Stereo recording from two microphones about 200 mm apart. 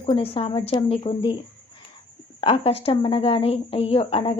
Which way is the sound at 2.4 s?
30° left (ahead or behind).